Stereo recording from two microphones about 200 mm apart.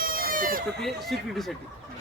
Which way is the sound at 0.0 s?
45° right (ahead or behind).